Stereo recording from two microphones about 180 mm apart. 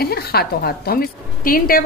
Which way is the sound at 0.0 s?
60° left (ahead or behind).